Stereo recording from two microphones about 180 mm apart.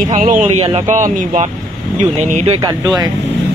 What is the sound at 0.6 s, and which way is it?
Speech, 30° right (ahead or behind).